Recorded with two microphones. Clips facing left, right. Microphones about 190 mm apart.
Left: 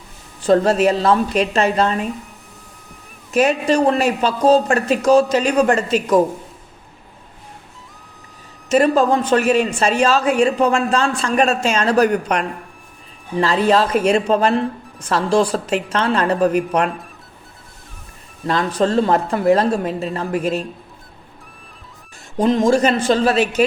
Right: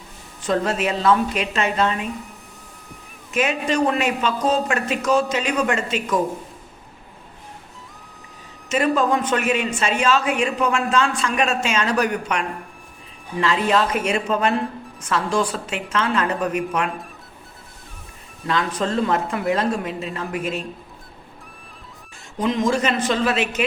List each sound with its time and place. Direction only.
0.4 s a woman's voice: 35° left (ahead or behind)
3.3 s a woman's voice: 35° left (ahead or behind)
8.7 s a woman's voice: 35° left (ahead or behind)
18.4 s a woman's voice: 35° left (ahead or behind)
22.4 s a woman's voice: 35° left (ahead or behind)